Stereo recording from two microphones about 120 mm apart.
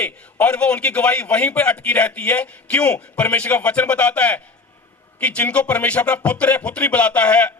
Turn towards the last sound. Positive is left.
turn(degrees=10)  # may be behind; listen again after turning